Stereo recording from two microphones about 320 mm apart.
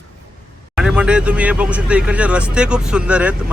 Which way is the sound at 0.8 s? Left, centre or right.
Centre.